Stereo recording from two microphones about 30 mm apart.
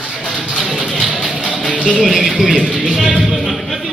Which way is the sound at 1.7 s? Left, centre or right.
Left.